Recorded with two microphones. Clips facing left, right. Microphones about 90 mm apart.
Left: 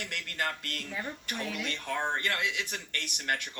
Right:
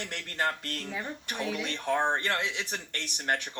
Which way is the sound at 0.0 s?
30° right (ahead or behind).